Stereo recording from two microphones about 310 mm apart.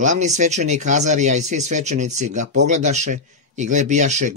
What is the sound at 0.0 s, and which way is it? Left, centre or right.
Speech, right.